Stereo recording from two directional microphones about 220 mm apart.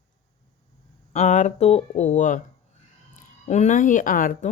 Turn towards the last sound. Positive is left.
turn(degrees=35)  # may be behind; listen again after turning